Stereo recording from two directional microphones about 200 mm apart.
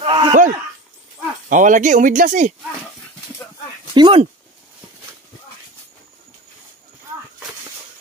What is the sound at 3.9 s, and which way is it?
Speech, 25° right (ahead or behind).